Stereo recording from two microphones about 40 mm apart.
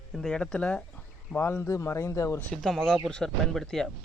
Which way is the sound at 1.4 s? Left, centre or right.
Left.